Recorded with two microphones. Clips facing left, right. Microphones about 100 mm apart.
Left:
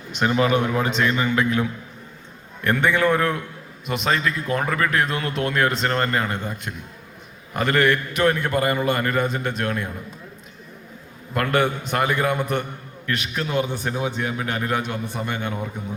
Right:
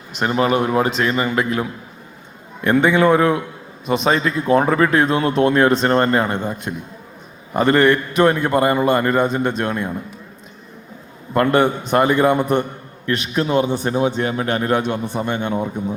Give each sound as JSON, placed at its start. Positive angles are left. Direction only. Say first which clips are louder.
{"t": 0.6, "sound": "a man's voice", "louder": "right 5 dB", "side_deg": -50}
{"t": 0.9, "sound": "a man's voice", "louder": "right 2 dB", "side_deg": 0}
{"t": 2.6, "sound": "a man's voice", "louder": "right 5 dB", "side_deg": -20}
{"t": 11.4, "sound": "speech", "louder": "right 4 dB", "side_deg": -20}